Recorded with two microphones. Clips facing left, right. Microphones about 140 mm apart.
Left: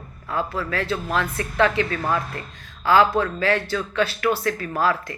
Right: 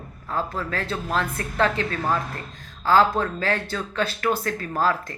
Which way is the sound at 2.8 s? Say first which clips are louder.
Left 1 dB; 40° right (ahead or behind).